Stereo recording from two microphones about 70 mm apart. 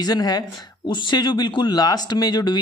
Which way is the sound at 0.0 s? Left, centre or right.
Left.